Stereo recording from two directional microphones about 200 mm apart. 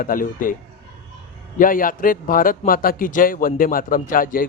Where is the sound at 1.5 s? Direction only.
45° left (ahead or behind).